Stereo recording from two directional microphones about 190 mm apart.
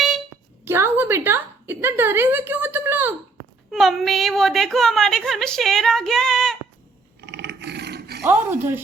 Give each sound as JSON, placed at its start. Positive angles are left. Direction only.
{"t": 0.6, "sound": "a woman's voice", "side_deg": -10}
{"t": 3.7, "sound": "a woman's voice", "side_deg": 0}
{"t": 7.2, "sound": "roar", "side_deg": -65}
{"t": 8.2, "sound": "a woman's voice", "side_deg": -10}